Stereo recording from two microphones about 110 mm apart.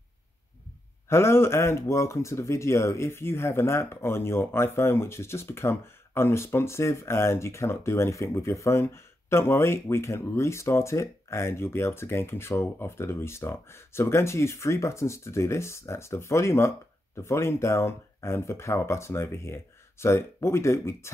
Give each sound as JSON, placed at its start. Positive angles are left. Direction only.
{"t": 1.0, "sound": "speech", "side_deg": 25}